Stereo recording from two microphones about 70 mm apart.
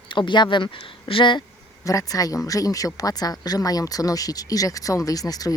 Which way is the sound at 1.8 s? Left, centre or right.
Left.